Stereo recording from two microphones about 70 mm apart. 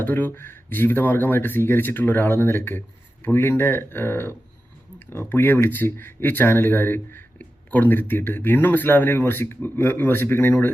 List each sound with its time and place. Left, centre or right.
0.0 s speech: left